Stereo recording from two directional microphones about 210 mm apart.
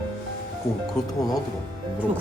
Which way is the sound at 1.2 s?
15° left (ahead or behind).